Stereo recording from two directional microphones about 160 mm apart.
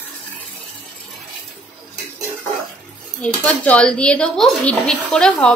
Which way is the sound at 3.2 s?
10° left (ahead or behind).